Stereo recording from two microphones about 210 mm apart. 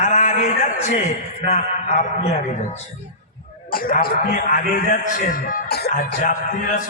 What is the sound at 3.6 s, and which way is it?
A man's voice, 45° left (ahead or behind).